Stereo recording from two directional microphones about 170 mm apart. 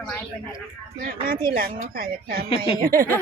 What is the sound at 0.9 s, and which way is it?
Speech, 60° right (ahead or behind).